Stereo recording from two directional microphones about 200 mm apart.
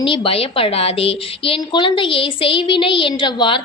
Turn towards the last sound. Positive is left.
turn(degrees=25)  # may be behind; listen again after turning